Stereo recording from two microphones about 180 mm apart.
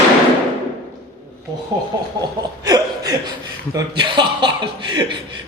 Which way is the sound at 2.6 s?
20° right (ahead or behind).